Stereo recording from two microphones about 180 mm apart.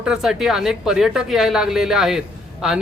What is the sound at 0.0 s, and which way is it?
A man's voice, 5° right (ahead or behind).